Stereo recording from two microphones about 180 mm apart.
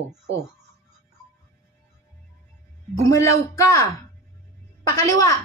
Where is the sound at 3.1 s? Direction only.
15° left (ahead or behind).